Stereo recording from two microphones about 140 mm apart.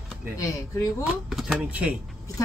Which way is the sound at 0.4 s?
25° left (ahead or behind).